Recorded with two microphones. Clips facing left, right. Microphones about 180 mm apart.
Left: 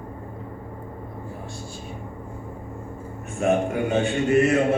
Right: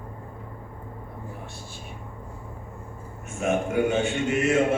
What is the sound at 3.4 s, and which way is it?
A man's voice, 35° left (ahead or behind).